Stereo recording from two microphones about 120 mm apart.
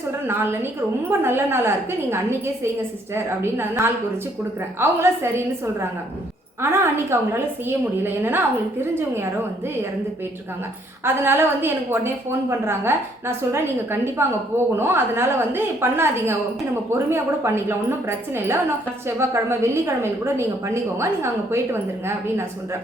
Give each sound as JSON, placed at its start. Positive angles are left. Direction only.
{"t": 0.3, "sound": "a woman's voice", "side_deg": -20}
{"t": 3.2, "sound": "a woman's voice", "side_deg": -20}
{"t": 6.6, "sound": "a woman's voice", "side_deg": -20}
{"t": 11.0, "sound": "a woman's voice", "side_deg": -20}
{"t": 19.0, "sound": "a woman's voice", "side_deg": -20}